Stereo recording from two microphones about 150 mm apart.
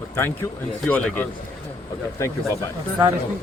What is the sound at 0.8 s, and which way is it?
Speech, 10° left (ahead or behind).